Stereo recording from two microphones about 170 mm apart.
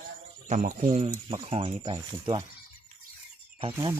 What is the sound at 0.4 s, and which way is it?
Speech, 45° right (ahead or behind).